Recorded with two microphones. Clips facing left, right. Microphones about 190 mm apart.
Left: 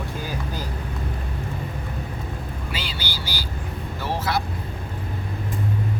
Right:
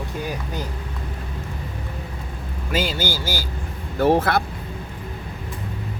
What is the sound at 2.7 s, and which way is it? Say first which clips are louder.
Speech: right 12 dB; 45° right (ahead or behind).